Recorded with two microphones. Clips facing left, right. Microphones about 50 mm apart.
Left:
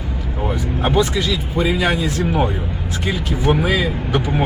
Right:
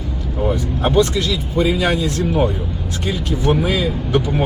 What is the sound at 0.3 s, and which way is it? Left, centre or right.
Speech, left.